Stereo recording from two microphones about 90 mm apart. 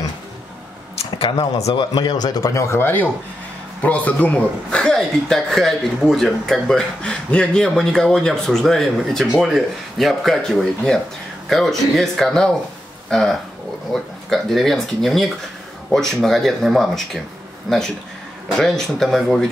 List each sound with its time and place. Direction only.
1.1 s a man's voice: 80° left; by 19.5 s 5° left (ahead or behind)